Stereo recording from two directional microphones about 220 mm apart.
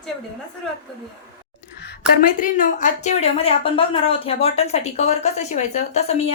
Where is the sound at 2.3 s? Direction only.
35° left (ahead or behind).